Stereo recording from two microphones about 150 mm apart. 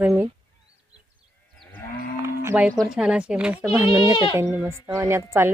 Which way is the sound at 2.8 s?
5° right (ahead or behind).